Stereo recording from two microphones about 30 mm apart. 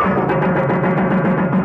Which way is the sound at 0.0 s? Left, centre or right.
Centre.